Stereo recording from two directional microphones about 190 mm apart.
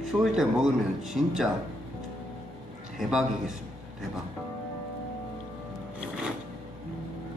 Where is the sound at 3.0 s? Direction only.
5° right (ahead or behind).